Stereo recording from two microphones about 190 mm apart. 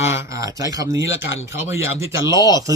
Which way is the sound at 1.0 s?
80° left.